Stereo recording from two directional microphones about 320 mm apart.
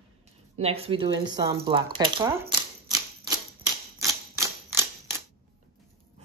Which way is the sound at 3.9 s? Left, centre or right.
Centre.